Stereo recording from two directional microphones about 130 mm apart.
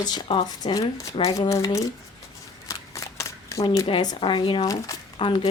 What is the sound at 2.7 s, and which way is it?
Shuffling cards, 25° left (ahead or behind).